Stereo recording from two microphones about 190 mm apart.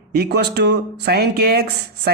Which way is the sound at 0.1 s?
60° right (ahead or behind).